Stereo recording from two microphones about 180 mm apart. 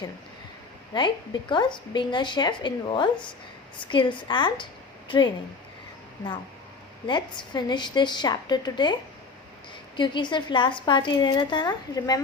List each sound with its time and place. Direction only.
0.9 s a woman's voice: 25° left (ahead or behind)
7.1 s a woman's voice: 25° left (ahead or behind)
10.0 s a woman's voice: 25° left (ahead or behind)